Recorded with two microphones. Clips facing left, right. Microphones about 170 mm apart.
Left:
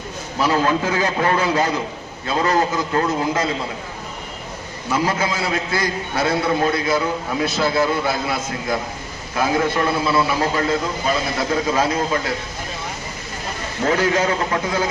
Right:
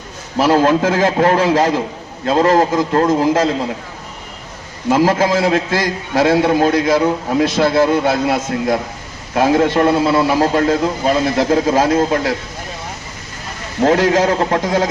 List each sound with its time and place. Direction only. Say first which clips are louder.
0.3 s a man's voice: right 6 dB; 85° right
2.2 s a man's voice: right 6 dB; 65° right (ahead or behind)
4.9 s a man's voice: right 8 dB; 75° right (ahead or behind)
7.6 s a man's voice: right 5 dB; 65° right (ahead or behind)
13.8 s a man's voice: right 6 dB; 70° right (ahead or behind)
14.3 s a man's voice: right 5 dB; 50° right (ahead or behind)
14.6 s a man's voice: right 6 dB; 85° right